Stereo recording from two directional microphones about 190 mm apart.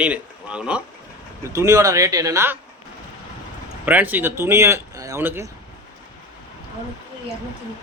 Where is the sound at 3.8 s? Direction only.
10° right (ahead or behind).